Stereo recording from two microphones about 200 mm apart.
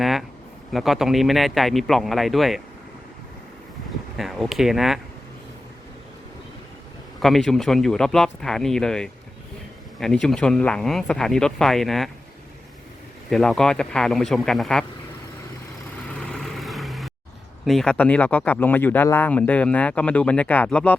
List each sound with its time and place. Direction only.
0.0 s a sound: centre (ahead or behind)
0.7 s speech: centre (ahead or behind)
4.2 s speech: centre (ahead or behind)
7.2 s speech: centre (ahead or behind)
13.3 s speech: centre (ahead or behind)
16.2 s vehicle: 5° left (ahead or behind)
17.7 s speech: 5° left (ahead or behind)